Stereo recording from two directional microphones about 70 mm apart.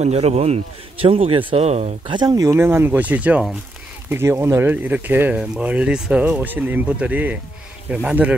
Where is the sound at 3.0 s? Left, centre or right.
Right.